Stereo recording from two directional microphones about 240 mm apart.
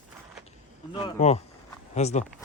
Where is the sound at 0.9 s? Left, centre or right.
Centre.